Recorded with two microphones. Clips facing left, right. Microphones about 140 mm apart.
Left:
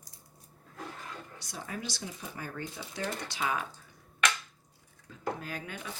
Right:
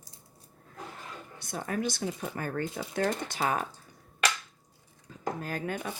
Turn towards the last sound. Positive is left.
turn(degrees=-45)  # may be behind; listen again after turning